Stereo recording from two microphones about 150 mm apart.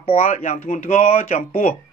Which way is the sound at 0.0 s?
45° left (ahead or behind).